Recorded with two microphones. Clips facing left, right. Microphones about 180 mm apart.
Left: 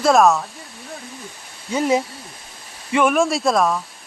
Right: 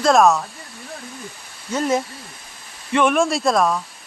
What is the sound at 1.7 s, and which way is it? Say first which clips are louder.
Speech: left 2 dB; 15° left (ahead or behind).